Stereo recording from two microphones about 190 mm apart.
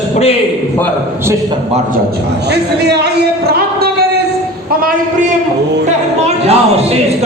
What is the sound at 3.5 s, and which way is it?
Music, 55° right (ahead or behind).